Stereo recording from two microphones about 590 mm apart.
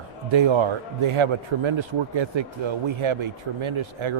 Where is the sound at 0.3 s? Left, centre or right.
Right.